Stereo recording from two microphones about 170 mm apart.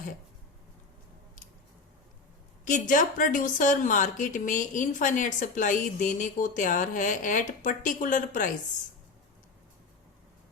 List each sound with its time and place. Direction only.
2.6 s speech: 50° left (ahead or behind)